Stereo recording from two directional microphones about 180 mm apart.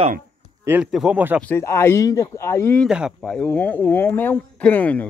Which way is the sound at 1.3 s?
10° left (ahead or behind).